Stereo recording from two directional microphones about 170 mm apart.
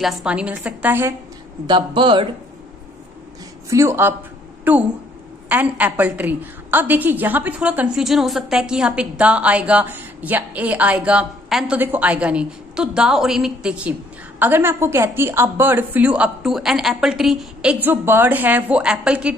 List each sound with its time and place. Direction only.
0.0 s a woman's voice: 5° right (ahead or behind)
1.7 s speech: 30° right (ahead or behind)
3.7 s a woman's voice: 15° right (ahead or behind)